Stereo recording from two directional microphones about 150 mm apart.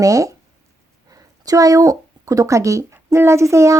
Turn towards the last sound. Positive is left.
turn(degrees=-20)  # may be behind; listen again after turning